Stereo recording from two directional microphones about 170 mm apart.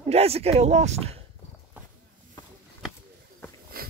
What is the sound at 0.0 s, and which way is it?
Speech, 35° right (ahead or behind).